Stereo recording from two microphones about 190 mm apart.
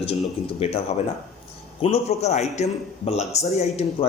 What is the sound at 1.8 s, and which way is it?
A man's voice, 35° left (ahead or behind).